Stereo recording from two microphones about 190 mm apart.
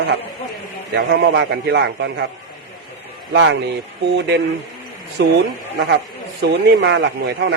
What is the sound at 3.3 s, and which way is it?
A man's voice, 70° right (ahead or behind).